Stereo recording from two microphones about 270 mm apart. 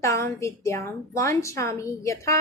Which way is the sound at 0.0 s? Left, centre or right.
Centre.